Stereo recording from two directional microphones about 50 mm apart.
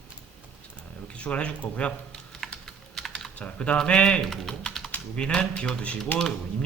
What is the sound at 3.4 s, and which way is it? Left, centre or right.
Speech, left.